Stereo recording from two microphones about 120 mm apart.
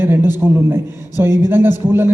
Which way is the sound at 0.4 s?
20° right (ahead or behind).